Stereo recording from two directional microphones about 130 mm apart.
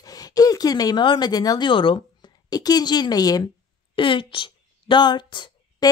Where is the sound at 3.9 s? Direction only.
40° left (ahead or behind).